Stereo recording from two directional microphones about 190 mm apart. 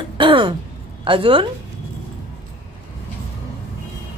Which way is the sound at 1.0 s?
25° right (ahead or behind).